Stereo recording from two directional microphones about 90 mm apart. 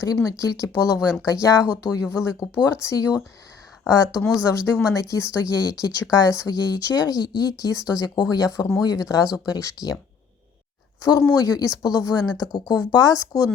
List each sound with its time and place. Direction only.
0.0 s speech: 40° left (ahead or behind)
11.0 s speech: 40° left (ahead or behind)